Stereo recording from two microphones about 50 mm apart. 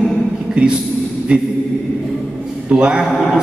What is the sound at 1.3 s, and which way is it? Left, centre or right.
Speech, right.